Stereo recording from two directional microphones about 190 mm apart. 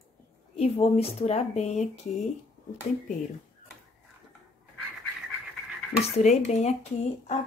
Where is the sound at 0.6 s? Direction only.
30° left (ahead or behind).